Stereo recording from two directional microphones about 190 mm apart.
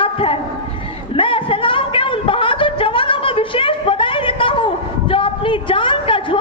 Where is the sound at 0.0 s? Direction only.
30° left (ahead or behind).